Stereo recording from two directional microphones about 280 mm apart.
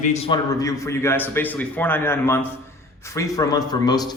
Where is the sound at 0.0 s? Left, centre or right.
Left.